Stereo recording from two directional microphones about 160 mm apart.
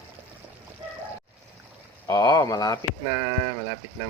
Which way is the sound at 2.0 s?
25° left (ahead or behind).